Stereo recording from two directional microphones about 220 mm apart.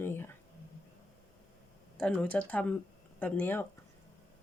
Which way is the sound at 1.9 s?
5° left (ahead or behind).